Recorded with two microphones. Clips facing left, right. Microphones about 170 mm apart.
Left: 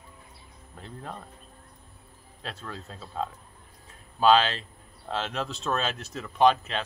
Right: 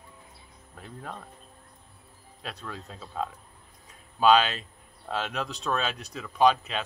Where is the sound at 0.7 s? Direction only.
5° right (ahead or behind).